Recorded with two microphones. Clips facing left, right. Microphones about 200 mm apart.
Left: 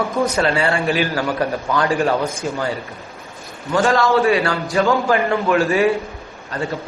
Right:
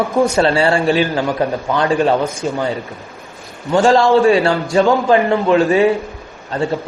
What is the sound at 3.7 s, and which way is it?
A man's voice, 25° right (ahead or behind).